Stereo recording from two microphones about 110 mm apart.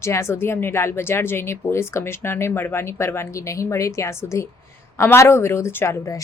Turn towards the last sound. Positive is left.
turn(degrees=30)  # may be behind; listen again after turning